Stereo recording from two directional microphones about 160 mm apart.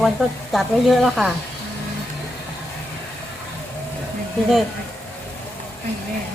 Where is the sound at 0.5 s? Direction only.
Centre (ahead or behind).